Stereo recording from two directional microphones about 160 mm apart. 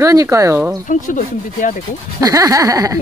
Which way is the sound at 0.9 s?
55° left (ahead or behind).